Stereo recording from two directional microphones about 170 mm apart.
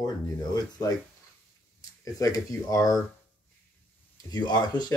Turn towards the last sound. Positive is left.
turn(degrees=25)  # may be behind; listen again after turning